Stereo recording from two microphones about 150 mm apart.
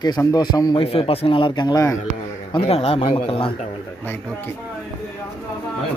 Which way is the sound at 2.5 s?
40° left (ahead or behind).